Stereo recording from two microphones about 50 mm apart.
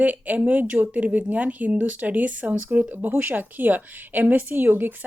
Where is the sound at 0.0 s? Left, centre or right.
Right.